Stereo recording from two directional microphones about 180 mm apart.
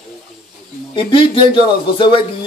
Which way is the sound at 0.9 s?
30° left (ahead or behind).